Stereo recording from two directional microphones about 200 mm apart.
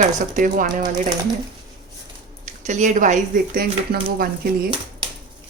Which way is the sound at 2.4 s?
35° right (ahead or behind).